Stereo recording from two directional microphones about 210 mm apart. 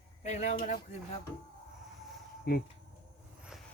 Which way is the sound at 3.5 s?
5° right (ahead or behind).